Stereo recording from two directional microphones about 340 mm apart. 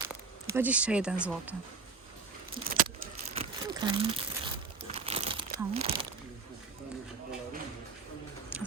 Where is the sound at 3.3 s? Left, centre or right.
Centre.